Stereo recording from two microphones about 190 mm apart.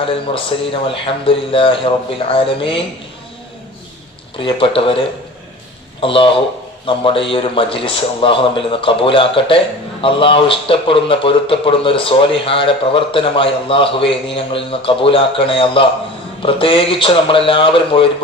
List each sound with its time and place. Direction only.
0.7 s a man's voice: 30° left (ahead or behind)
4.4 s a man's voice: 25° left (ahead or behind)